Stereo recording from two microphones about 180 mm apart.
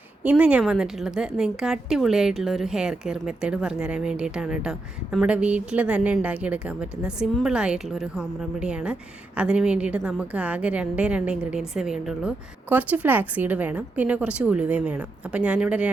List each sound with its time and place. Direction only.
0.2 s a woman's voice: 5° right (ahead or behind)